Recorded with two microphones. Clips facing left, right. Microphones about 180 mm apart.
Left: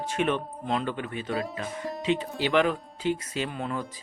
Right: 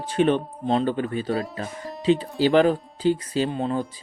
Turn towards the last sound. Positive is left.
turn(degrees=-25)  # may be behind; listen again after turning